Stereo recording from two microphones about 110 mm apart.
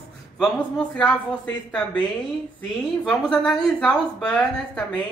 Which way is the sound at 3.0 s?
5° left (ahead or behind).